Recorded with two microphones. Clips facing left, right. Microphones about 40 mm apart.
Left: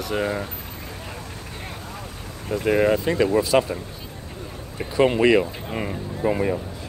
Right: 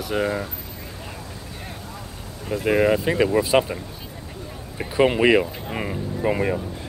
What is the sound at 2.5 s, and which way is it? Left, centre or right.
Speech, centre.